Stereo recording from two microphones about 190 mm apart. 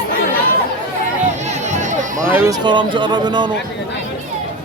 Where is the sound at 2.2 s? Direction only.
10° right (ahead or behind).